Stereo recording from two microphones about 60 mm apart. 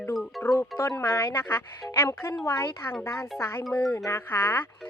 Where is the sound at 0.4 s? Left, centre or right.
Left.